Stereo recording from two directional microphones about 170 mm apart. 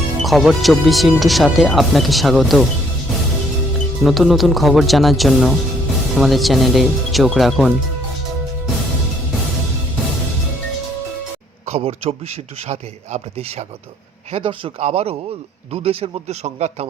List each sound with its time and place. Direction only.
0.2 s speech: centre (ahead or behind)
4.0 s speech: centre (ahead or behind)
11.7 s speech: 35° right (ahead or behind)